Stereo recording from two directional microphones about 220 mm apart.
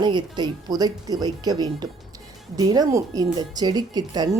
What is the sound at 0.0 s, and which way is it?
Speech, 20° right (ahead or behind).